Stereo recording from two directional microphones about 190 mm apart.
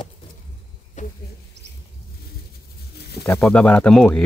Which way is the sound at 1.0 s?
40° left (ahead or behind).